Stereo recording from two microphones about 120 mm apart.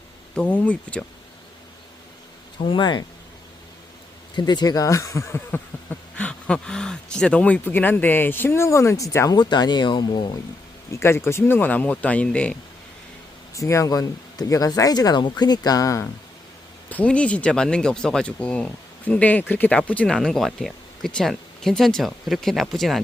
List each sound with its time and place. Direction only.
0.3 s speech: 10° left (ahead or behind)
2.6 s speech: 45° left (ahead or behind)
4.4 s speech: 35° left (ahead or behind)
10.9 s speech: 20° left (ahead or behind)
13.5 s speech: 25° left (ahead or behind)
16.9 s speech: 10° left (ahead or behind)